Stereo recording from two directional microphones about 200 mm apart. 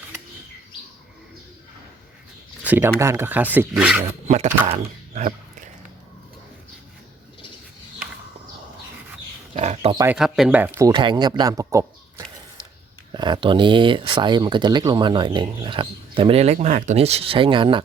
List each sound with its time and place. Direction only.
2.6 s speech: 10° right (ahead or behind)
4.3 s speech: 35° right (ahead or behind)
4.8 s a sound: 40° right (ahead or behind)
9.6 s oink: 35° right (ahead or behind)
9.9 s speech: 15° right (ahead or behind)
10.2 s speech: centre (ahead or behind); by 17.8 s 25° right (ahead or behind)